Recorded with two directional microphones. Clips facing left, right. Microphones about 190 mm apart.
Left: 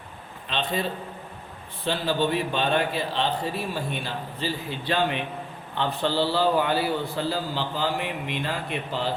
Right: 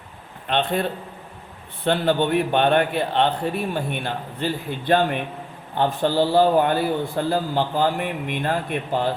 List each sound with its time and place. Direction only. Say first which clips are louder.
0.4 s a man's voice: right 5 dB; 55° right (ahead or behind)